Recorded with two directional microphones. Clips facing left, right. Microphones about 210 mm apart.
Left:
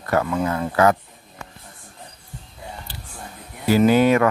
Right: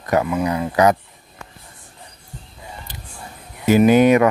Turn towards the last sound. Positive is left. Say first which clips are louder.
# right 3 dB
turn(degrees=-20)  # may be behind; listen again after turning